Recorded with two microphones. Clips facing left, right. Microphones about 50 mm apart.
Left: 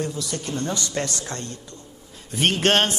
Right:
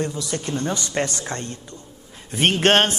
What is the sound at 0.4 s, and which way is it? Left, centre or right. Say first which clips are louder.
Music: right 2 dB; centre.